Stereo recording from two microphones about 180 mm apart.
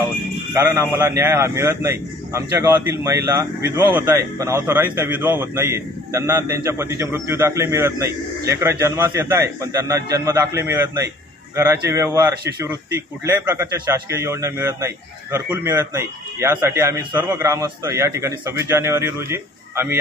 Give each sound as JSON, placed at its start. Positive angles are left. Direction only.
{"t": 0.7, "sound": "a man's voice", "side_deg": -15}
{"t": 13.8, "sound": "a man's voice", "side_deg": -15}